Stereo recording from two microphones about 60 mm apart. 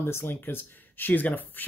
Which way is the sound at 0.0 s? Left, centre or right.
Left.